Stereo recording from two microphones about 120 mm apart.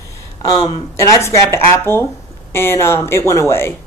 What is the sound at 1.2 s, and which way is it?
Speech, 20° left (ahead or behind).